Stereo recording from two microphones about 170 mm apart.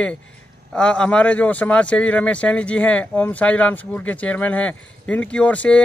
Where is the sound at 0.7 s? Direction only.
5° left (ahead or behind).